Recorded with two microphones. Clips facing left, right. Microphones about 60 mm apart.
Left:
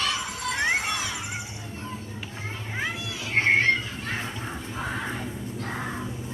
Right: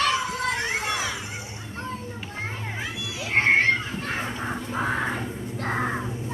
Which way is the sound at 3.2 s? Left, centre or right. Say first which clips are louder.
Right 2 dB; right.